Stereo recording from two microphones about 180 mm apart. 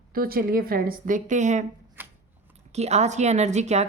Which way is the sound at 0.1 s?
55° right (ahead or behind).